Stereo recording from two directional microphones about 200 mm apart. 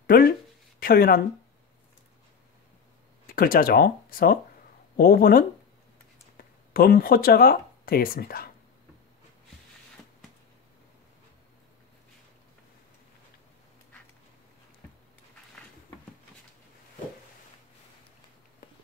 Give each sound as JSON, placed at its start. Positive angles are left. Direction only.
{"t": 0.0, "sound": "speech", "side_deg": 50}
{"t": 3.3, "sound": "speech", "side_deg": 45}